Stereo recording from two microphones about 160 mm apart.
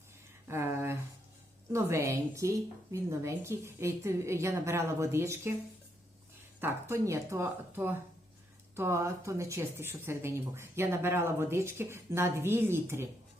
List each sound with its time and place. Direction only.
0.4 s a sound: 15° right (ahead or behind)
1.7 s speech: 20° right (ahead or behind)
6.6 s speech: 15° right (ahead or behind)